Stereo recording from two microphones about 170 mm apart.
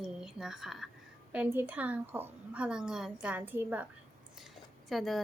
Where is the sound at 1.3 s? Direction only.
10° right (ahead or behind).